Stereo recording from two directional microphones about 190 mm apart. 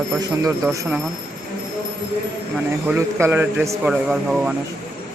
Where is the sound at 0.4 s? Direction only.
15° right (ahead or behind).